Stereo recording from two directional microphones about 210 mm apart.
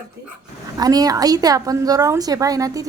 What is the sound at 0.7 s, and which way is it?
A woman's voice, 20° right (ahead or behind).